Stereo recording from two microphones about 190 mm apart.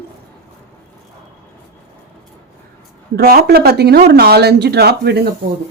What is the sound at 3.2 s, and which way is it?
Speech, 55° right (ahead or behind).